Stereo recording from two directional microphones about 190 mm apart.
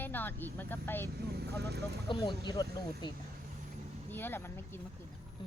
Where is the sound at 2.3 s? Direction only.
20° left (ahead or behind).